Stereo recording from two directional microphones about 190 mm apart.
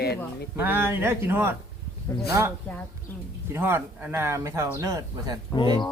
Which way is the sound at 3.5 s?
10° right (ahead or behind).